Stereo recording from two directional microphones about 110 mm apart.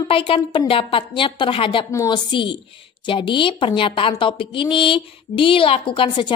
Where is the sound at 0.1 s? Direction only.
50° left (ahead or behind).